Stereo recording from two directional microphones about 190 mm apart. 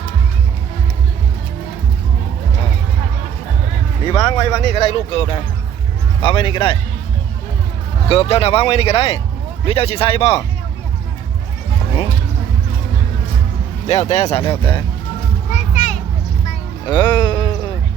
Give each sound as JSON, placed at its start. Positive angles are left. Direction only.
{"t": 4.2, "sound": "speech", "side_deg": 25}
{"t": 6.2, "sound": "speech", "side_deg": 25}
{"t": 8.1, "sound": "speech", "side_deg": 30}
{"t": 13.8, "sound": "speech", "side_deg": 35}
{"t": 15.5, "sound": "children playing", "side_deg": 40}
{"t": 16.8, "sound": "sheep", "side_deg": 20}